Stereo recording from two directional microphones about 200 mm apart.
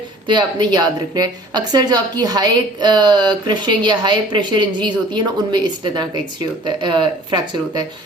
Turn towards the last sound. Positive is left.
turn(degrees=-20)  # may be behind; listen again after turning